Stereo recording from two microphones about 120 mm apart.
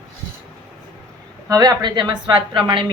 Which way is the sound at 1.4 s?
30° right (ahead or behind).